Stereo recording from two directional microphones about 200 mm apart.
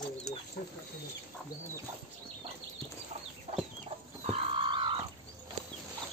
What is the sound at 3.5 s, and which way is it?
Chicken, 30° right (ahead or behind).